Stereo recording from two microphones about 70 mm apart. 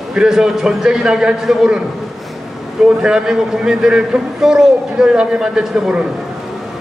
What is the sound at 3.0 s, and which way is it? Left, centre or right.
A man's voice, centre.